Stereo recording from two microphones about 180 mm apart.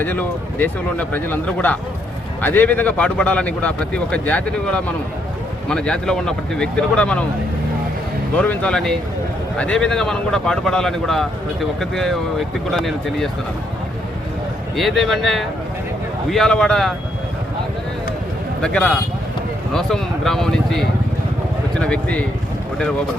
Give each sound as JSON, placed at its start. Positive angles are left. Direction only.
{"t": 0.0, "sound": "a man's voice", "side_deg": 10}
{"t": 8.4, "sound": "speech", "side_deg": 5}
{"t": 14.8, "sound": "speech", "side_deg": 0}
{"t": 18.6, "sound": "a man's voice", "side_deg": 5}